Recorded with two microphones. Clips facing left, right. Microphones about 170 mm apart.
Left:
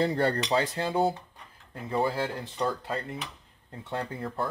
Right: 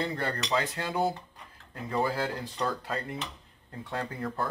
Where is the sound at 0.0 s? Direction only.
30° left (ahead or behind).